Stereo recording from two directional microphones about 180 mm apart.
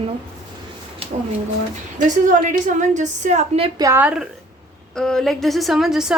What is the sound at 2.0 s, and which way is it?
A woman's voice, 45° right (ahead or behind).